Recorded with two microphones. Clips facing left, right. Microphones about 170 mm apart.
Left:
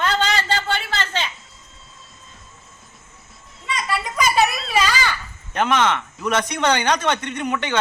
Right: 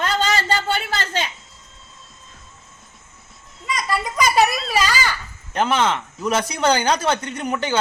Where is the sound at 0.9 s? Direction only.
40° right (ahead or behind).